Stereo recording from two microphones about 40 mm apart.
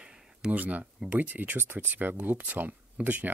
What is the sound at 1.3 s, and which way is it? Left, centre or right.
Speech, right.